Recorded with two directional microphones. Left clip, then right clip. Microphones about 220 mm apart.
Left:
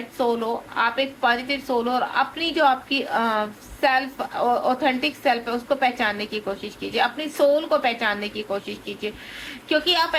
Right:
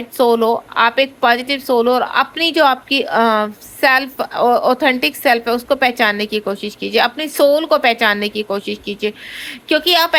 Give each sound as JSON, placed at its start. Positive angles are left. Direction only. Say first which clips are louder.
{"t": 0.2, "sound": "a woman's voice", "louder": "right 10 dB", "side_deg": -50}